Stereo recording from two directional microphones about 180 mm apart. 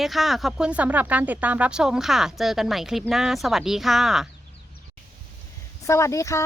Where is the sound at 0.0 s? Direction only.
Centre (ahead or behind).